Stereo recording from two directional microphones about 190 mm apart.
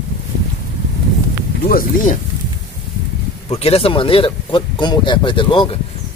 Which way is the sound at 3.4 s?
30° left (ahead or behind).